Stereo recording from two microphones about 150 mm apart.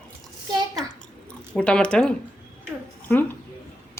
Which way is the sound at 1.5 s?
5° left (ahead or behind).